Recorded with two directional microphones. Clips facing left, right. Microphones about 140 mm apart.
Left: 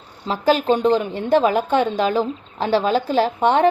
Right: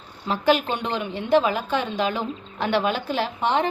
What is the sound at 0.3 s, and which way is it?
A woman's voice, 40° left (ahead or behind).